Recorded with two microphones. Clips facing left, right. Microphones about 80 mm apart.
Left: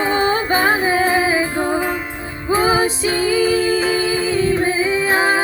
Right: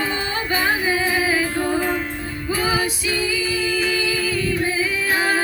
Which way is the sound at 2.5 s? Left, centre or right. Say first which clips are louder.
Left 6 dB; left.